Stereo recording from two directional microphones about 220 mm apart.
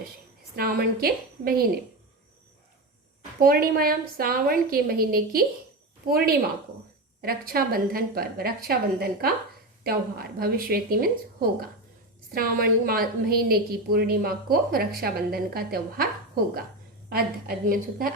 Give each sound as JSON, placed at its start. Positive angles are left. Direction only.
{"t": 0.5, "sound": "a woman's voice", "side_deg": -45}
{"t": 3.4, "sound": "a woman's voice", "side_deg": -45}
{"t": 10.3, "sound": "a woman's voice", "side_deg": -45}